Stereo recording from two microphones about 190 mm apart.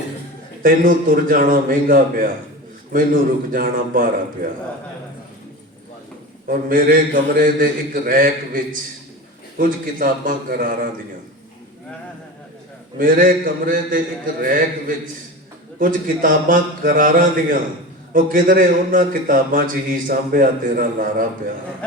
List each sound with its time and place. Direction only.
0.6 s a man's voice: 45° right (ahead or behind)
6.5 s a man's voice: 50° right (ahead or behind)
13.0 s a man's voice: 45° right (ahead or behind)